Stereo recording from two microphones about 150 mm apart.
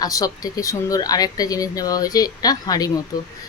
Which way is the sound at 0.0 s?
25° left (ahead or behind).